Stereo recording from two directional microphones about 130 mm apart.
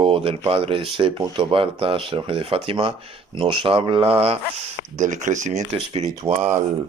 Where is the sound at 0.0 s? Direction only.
45° right (ahead or behind); by 5.6 s 65° right (ahead or behind).